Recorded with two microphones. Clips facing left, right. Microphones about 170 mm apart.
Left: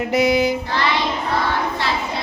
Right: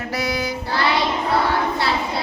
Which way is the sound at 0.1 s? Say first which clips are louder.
Left 8 dB; 20° left (ahead or behind).